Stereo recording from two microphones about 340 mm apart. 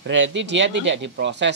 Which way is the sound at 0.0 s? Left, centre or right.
Right.